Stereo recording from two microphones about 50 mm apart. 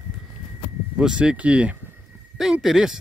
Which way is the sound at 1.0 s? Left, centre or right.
Centre.